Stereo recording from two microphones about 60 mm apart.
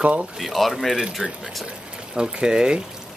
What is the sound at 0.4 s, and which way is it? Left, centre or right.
Speech, centre.